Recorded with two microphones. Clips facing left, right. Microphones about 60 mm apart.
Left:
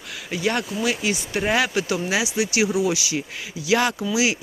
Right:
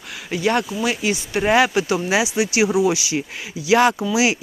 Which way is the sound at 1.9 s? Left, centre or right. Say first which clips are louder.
Right 4 dB; right.